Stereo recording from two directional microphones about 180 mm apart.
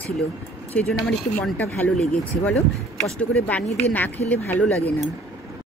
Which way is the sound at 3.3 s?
10° left (ahead or behind).